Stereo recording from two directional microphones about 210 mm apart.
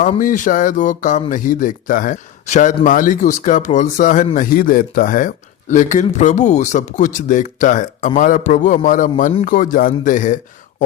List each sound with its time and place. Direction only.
0.0 s speech: 40° left (ahead or behind)